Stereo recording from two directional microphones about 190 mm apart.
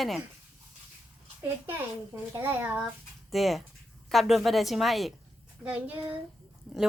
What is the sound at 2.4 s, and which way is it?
Speech, 10° right (ahead or behind).